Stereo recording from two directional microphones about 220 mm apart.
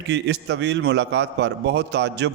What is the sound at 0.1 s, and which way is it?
A man's voice, 50° right (ahead or behind).